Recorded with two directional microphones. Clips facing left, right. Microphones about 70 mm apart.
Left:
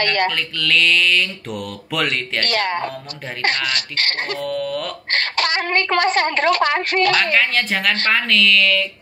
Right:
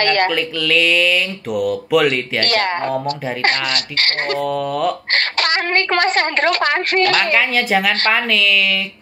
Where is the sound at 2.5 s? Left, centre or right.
Right.